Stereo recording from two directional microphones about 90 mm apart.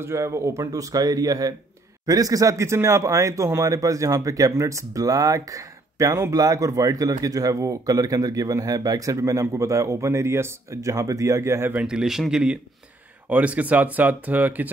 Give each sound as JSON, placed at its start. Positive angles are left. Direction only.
{"t": 0.0, "sound": "a man's voice", "side_deg": -35}
{"t": 11.7, "sound": "speech", "side_deg": -10}